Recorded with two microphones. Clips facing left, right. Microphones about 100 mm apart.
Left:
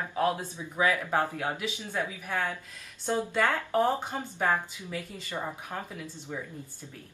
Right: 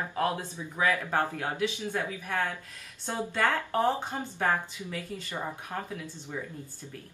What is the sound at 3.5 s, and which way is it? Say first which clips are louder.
Speech: left 1 dB; 15° left (ahead or behind).